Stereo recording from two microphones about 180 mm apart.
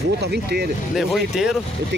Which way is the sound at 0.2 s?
65° right (ahead or behind).